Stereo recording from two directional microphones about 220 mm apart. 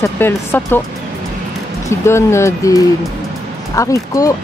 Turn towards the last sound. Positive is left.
turn(degrees=15)  # may be behind; listen again after turning